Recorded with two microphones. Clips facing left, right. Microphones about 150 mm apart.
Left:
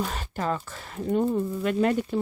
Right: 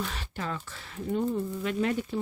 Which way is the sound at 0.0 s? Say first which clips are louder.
Left 6 dB; 45° left (ahead or behind).